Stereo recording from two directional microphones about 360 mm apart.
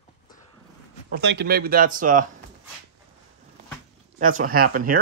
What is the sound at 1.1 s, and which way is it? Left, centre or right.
Speech, right.